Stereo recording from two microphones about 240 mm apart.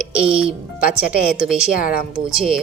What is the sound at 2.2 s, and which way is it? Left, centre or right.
Speech, centre.